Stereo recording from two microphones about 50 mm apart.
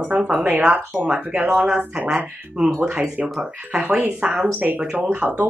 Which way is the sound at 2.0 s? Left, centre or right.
Centre.